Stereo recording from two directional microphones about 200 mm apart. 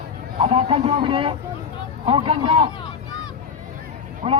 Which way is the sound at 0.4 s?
30° right (ahead or behind).